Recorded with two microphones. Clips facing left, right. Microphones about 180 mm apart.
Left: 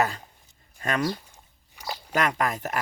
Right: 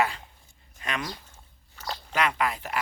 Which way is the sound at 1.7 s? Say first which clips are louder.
Left 1 dB; 10° left (ahead or behind).